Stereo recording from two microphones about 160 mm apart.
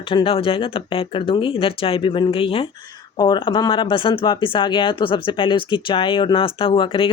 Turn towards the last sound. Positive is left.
turn(degrees=35)  # may be behind; listen again after turning